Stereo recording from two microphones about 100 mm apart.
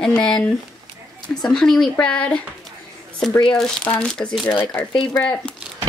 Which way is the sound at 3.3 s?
45° left (ahead or behind).